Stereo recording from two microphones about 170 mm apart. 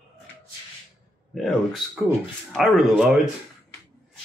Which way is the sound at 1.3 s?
Centre (ahead or behind).